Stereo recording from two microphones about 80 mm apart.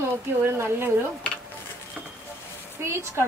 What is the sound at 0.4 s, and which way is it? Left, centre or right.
Speech, right.